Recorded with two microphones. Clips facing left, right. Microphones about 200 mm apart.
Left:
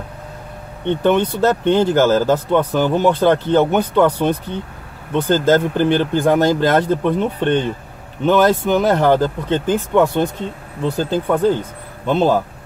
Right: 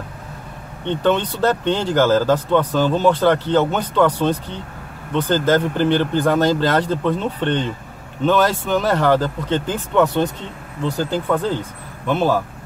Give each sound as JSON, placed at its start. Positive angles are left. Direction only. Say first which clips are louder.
{"t": 0.8, "sound": "speech", "louder": "left 3 dB", "side_deg": 15}